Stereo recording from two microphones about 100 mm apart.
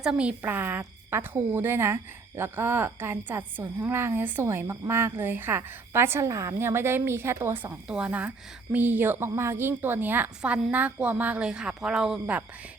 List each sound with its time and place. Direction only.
0.0 s a woman's voice: 10° right (ahead or behind)
7.9 s a woman's voice: 10° right (ahead or behind)